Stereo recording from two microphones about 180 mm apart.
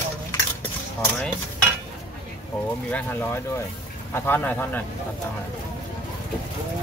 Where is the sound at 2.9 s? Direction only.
10° left (ahead or behind).